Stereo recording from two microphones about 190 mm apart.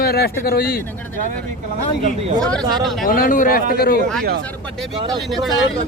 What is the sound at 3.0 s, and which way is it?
Speech, 45° left (ahead or behind).